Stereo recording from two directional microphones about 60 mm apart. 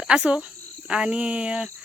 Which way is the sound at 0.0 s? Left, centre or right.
Centre.